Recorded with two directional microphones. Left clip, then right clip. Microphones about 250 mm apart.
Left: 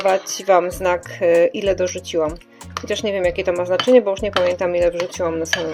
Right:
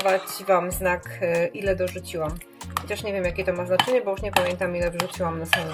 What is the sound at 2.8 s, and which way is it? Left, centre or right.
Speech, left.